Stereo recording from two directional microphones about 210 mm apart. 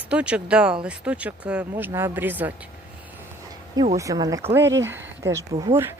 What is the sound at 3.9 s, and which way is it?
Speech, 15° right (ahead or behind).